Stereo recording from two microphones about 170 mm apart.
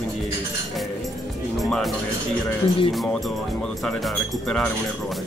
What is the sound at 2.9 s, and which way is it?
Speech, centre (ahead or behind).